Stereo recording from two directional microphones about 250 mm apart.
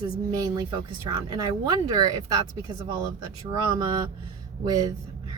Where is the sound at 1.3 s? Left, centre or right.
Centre.